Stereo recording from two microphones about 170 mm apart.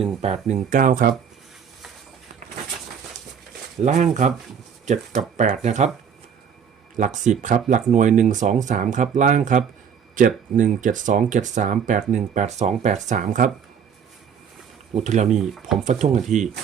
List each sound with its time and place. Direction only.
0.0 s speech: 40° right (ahead or behind); by 1.1 s 55° right (ahead or behind)
3.8 s speech: 45° right (ahead or behind)
6.9 s speech: 45° right (ahead or behind)
14.9 s speech: 45° right (ahead or behind)
15.3 s speech: centre (ahead or behind)
15.8 s speech: 45° right (ahead or behind)